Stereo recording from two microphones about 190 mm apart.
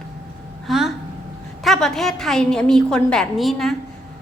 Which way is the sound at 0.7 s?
Centre (ahead or behind).